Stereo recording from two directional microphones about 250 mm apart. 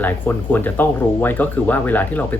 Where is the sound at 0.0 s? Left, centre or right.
Centre.